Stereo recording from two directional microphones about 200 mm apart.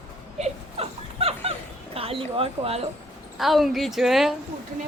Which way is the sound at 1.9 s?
30° right (ahead or behind).